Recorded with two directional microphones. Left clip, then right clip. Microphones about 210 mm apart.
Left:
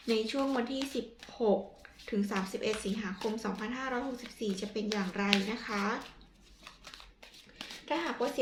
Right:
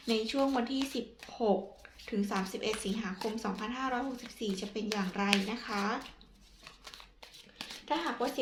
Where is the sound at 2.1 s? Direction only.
25° right (ahead or behind).